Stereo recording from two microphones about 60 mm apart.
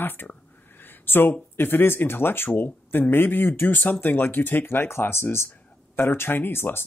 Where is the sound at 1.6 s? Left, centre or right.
Left.